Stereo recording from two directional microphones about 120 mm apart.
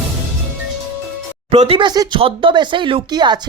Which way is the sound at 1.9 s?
40° right (ahead or behind).